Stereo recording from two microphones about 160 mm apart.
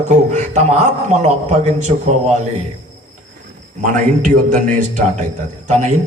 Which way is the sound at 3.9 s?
55° right (ahead or behind).